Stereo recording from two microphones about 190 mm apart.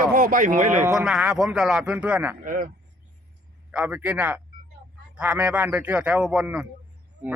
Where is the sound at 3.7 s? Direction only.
5° right (ahead or behind).